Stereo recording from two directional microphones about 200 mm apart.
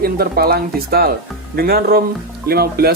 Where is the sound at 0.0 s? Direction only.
50° right (ahead or behind).